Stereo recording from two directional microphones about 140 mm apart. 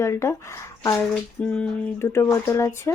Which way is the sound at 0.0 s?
20° left (ahead or behind).